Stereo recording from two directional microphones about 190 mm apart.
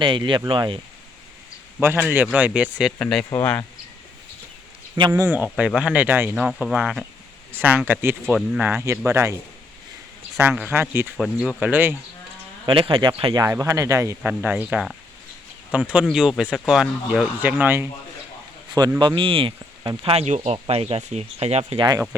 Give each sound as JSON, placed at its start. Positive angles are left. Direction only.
{"t": 0.0, "sound": "speech", "side_deg": -25}
{"t": 1.8, "sound": "speech", "side_deg": -10}
{"t": 4.9, "sound": "speech", "side_deg": -25}
{"t": 5.2, "sound": "speech", "side_deg": -10}
{"t": 10.5, "sound": "speech", "side_deg": -10}
{"t": 12.6, "sound": "speech", "side_deg": -30}
{"t": 14.2, "sound": "speech", "side_deg": -5}
{"t": 18.9, "sound": "speech", "side_deg": -25}